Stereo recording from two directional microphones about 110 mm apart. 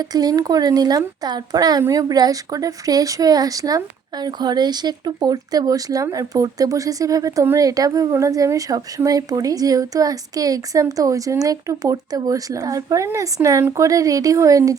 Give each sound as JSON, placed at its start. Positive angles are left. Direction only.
{"t": 0.0, "sound": "a woman's voice", "side_deg": -35}